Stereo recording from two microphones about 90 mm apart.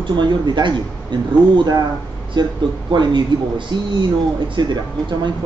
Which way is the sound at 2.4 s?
55° right (ahead or behind).